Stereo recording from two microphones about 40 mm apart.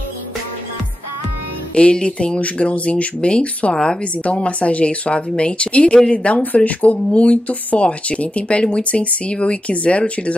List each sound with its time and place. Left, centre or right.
1.8 s speech: left
3.7 s speech: centre
4.0 s speech: left